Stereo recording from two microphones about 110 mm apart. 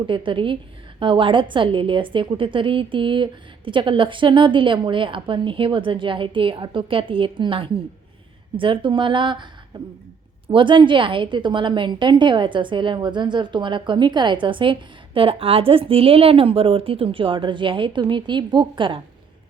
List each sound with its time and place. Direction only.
0.1 s a woman's voice: 50° right (ahead or behind)